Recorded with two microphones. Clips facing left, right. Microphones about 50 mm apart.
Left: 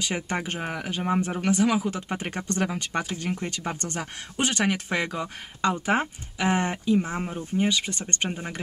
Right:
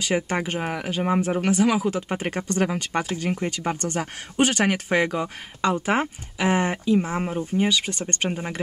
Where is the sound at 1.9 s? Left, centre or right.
Right.